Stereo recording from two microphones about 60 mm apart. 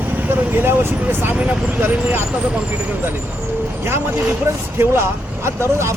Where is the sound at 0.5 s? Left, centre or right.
Right.